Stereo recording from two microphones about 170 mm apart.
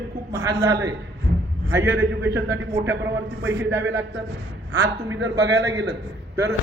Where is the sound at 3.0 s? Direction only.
90° right.